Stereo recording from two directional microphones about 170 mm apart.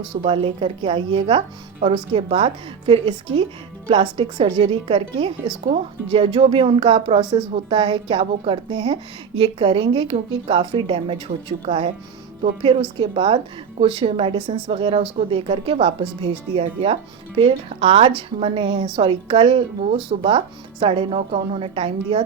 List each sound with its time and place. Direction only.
0.2 s a woman's voice: 30° right (ahead or behind)